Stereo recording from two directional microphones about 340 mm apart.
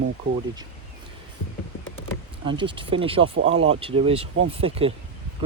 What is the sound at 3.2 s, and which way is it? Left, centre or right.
Speech, right.